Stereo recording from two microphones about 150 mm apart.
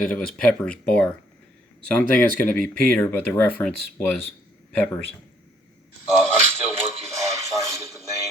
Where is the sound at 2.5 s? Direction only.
5° left (ahead or behind).